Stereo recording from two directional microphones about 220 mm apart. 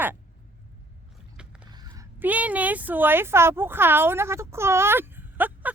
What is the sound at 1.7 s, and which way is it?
Speech, 15° right (ahead or behind).